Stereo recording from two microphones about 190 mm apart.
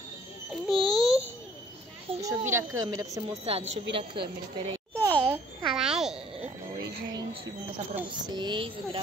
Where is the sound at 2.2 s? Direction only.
15° right (ahead or behind).